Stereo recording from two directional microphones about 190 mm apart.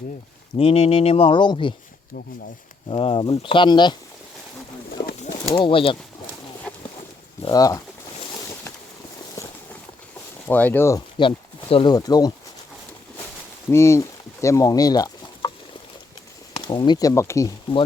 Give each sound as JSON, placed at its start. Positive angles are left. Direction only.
{"t": 0.5, "sound": "speech", "side_deg": 30}
{"t": 2.9, "sound": "speech", "side_deg": 30}
{"t": 5.2, "sound": "bird", "side_deg": 30}
{"t": 7.4, "sound": "speech", "side_deg": 20}
{"t": 10.5, "sound": "speech", "side_deg": 10}
{"t": 11.2, "sound": "speech", "side_deg": 25}
{"t": 13.7, "sound": "a sound", "side_deg": 15}
{"t": 16.6, "sound": "speech", "side_deg": 25}